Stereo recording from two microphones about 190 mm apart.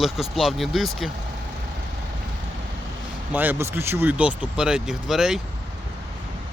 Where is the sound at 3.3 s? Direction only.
10° right (ahead or behind).